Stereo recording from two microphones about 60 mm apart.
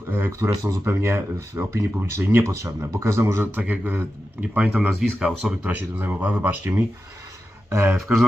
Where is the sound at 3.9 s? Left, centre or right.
Right.